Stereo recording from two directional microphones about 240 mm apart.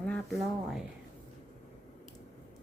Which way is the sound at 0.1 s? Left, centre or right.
Centre.